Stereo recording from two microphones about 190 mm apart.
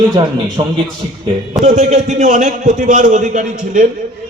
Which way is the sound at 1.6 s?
40° right (ahead or behind).